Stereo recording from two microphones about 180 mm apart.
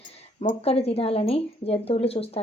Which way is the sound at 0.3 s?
35° left (ahead or behind).